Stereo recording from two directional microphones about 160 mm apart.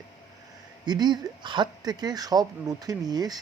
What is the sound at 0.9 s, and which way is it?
Speech, 25° right (ahead or behind).